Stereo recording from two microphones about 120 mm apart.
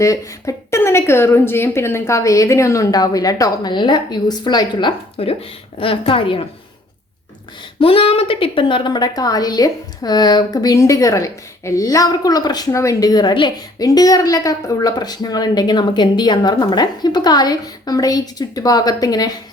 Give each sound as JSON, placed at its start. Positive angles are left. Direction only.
{"t": 0.0, "sound": "a woman's voice", "side_deg": 25}
{"t": 7.8, "sound": "a woman's voice", "side_deg": 50}